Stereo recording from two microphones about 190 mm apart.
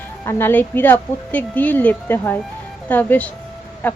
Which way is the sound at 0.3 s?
10° left (ahead or behind).